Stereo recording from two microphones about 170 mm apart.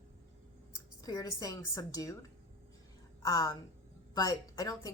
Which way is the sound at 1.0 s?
20° left (ahead or behind).